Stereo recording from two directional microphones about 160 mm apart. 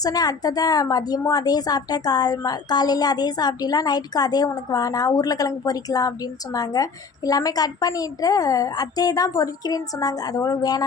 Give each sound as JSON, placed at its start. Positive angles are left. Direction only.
{"t": 0.0, "sound": "a woman's voice", "side_deg": 25}